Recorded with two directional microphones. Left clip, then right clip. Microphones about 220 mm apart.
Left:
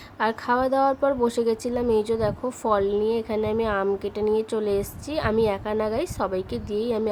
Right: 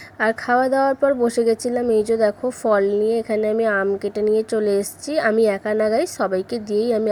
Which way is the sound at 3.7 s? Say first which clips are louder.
Right 4 dB; 10° right (ahead or behind).